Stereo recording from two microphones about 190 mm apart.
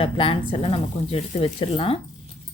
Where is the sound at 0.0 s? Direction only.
30° left (ahead or behind).